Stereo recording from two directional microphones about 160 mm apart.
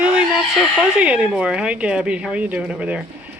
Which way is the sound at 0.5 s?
5° right (ahead or behind).